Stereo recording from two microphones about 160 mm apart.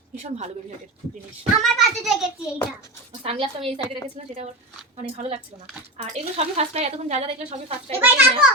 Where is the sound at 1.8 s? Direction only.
Centre (ahead or behind).